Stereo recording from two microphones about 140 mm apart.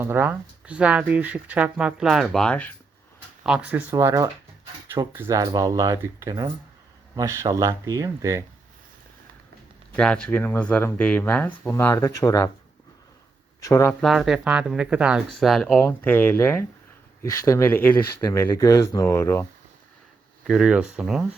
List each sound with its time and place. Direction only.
0.0 s speech: 15° right (ahead or behind); by 2.6 s 5° left (ahead or behind)
3.4 s speech: 10° right (ahead or behind)
9.9 s speech: 5° left (ahead or behind); by 12.5 s 25° left (ahead or behind)
13.6 s speech: 25° left (ahead or behind)
14.0 s speech: centre (ahead or behind)
15.8 s speech: 15° left (ahead or behind)
18.2 s speech: 25° left (ahead or behind)
20.5 s speech: 5° right (ahead or behind)